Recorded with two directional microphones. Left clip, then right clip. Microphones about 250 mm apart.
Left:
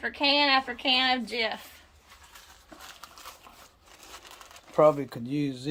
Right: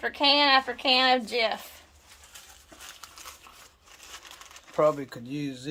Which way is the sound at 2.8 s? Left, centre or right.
Left.